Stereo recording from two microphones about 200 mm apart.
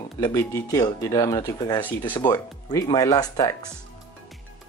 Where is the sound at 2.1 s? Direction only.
20° left (ahead or behind).